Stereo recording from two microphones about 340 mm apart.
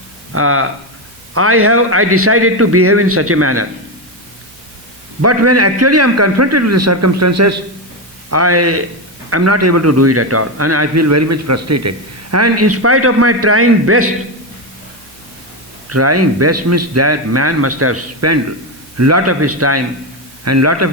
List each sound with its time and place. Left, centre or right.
0.3 s a man's voice: right
5.2 s a man's voice: right
15.9 s a man's voice: right